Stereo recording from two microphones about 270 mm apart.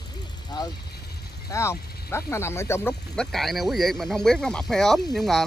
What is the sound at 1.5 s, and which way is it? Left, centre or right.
Speech, centre.